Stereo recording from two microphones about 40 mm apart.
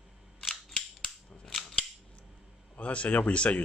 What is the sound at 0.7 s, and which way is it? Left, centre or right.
Cap gun, centre.